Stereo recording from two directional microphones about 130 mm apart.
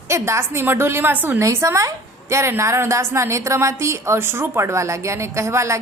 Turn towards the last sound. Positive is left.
turn(degrees=-20)  # may be behind; listen again after turning